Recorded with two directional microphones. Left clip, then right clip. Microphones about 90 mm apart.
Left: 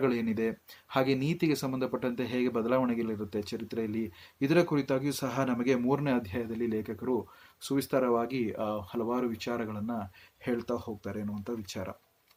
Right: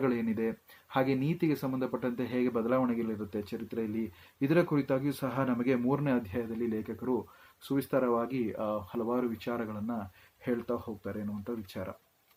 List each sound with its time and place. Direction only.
0.0 s speech: 30° left (ahead or behind)